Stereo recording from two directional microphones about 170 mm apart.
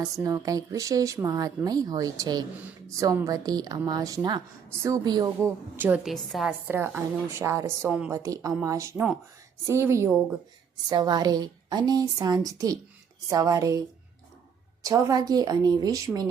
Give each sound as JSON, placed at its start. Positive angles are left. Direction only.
{"t": 0.0, "sound": "a woman's voice", "side_deg": -20}
{"t": 5.7, "sound": "a woman's voice", "side_deg": -10}
{"t": 6.7, "sound": "a woman's voice", "side_deg": -10}